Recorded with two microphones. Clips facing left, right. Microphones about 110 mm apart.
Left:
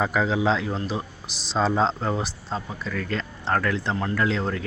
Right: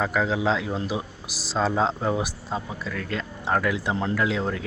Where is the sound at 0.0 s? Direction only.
Centre (ahead or behind).